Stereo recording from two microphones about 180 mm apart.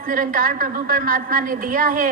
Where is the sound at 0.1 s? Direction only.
50° right (ahead or behind).